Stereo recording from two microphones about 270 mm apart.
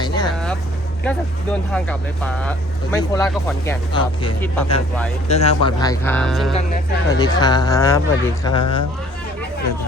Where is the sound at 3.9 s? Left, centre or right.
Centre.